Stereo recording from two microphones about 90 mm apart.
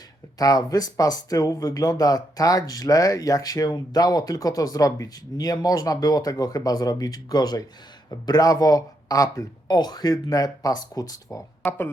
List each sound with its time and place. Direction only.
0.3 s speech: 45° left (ahead or behind)